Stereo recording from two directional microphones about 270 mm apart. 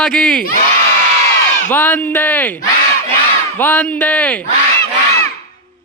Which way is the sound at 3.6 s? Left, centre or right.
Centre.